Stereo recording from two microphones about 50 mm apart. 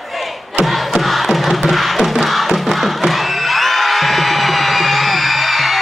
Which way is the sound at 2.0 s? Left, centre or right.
Centre.